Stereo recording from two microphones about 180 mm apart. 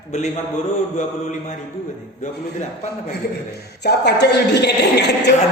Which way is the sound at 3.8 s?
65° left (ahead or behind).